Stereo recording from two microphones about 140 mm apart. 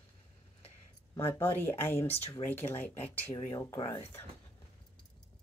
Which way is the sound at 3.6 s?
25° left (ahead or behind).